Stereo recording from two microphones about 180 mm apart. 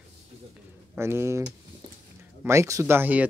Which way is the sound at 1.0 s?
15° right (ahead or behind).